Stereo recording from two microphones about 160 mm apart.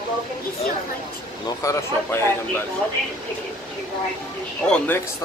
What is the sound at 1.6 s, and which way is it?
Speech, 15° left (ahead or behind).